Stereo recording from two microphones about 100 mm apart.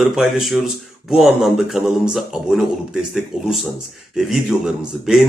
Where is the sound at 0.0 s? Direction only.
5° right (ahead or behind).